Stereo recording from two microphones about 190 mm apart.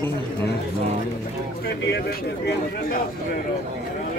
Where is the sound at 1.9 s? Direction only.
55° left (ahead or behind).